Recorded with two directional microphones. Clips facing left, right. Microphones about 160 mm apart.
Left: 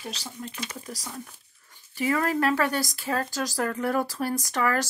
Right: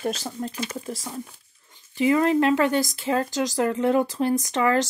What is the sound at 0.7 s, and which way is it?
Speech, 25° right (ahead or behind).